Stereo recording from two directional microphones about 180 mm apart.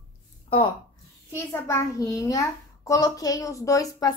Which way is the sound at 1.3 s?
15° left (ahead or behind).